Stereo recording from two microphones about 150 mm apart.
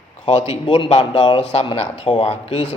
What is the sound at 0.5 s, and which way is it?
A man's voice, 35° left (ahead or behind).